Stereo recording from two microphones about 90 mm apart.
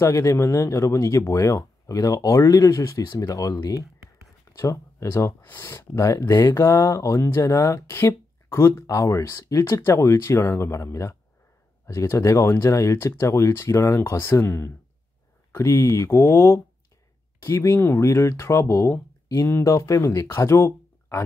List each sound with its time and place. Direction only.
0.0 s speech: 35° left (ahead or behind)